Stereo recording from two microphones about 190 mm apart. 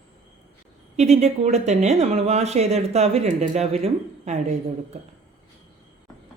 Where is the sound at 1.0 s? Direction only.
35° right (ahead or behind).